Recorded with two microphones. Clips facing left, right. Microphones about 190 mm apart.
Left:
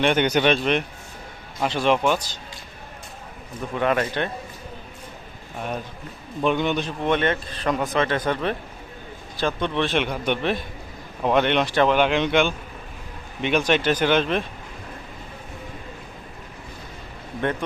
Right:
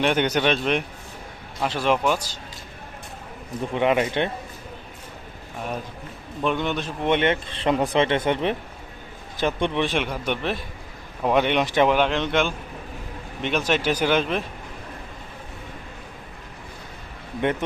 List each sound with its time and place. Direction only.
0.0 s speech: centre (ahead or behind)
3.8 s speech: 20° right (ahead or behind)
6.4 s speech: centre (ahead or behind)
7.0 s speech: 20° right (ahead or behind)
10.0 s speech: 5° right (ahead or behind)
11.9 s speech: centre (ahead or behind)